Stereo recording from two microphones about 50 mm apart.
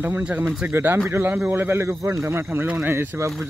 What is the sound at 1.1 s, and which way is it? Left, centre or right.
Speech, right.